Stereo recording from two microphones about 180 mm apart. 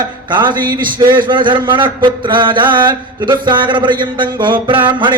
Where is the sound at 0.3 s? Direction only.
25° right (ahead or behind).